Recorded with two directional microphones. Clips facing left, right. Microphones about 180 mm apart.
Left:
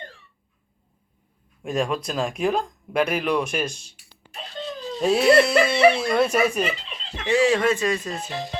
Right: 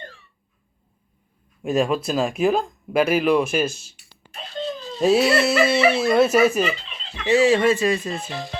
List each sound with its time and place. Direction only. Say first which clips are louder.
1.6 s speech: right 4 dB; 5° right (ahead or behind)
4.9 s speech: left 1 dB; 5° right (ahead or behind)
8.3 s speech: even; 15° left (ahead or behind)